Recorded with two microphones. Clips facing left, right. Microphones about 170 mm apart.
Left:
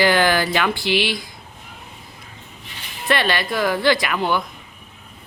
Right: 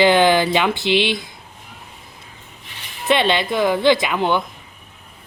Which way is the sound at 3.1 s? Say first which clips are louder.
Right 3 dB; 20° right (ahead or behind).